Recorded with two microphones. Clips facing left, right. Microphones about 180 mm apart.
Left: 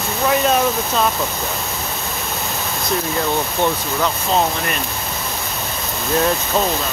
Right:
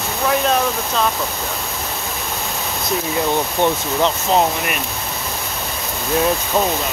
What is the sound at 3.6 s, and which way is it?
Speech, 20° right (ahead or behind).